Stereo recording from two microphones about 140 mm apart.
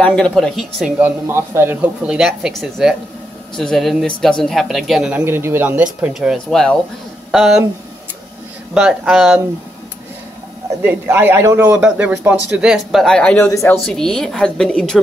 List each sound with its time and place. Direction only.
0.0 s speech: 5° left (ahead or behind); by 2.1 s 15° right (ahead or behind)
2.1 s speech: 5° right (ahead or behind)
5.2 s speech: 15° right (ahead or behind)
8.7 s speech: centre (ahead or behind)
10.8 s speech: 15° right (ahead or behind); by 13.5 s 10° left (ahead or behind)
13.5 s a woman's voice: 20° left (ahead or behind)
13.8 s speech: 5° left (ahead or behind)